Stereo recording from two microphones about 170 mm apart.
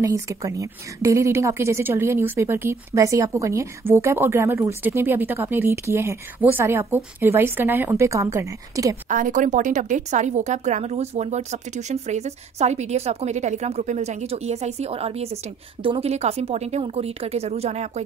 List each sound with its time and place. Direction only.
0.0 s a woman's voice: 20° right (ahead or behind)
9.1 s a woman's voice: 50° right (ahead or behind)